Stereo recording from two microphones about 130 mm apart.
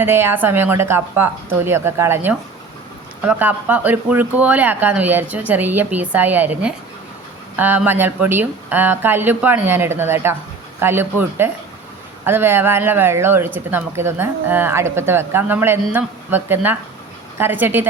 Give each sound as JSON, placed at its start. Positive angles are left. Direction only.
{"t": 0.0, "sound": "speech", "side_deg": -20}